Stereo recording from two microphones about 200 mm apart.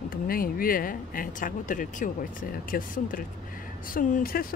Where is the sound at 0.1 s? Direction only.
45° left (ahead or behind).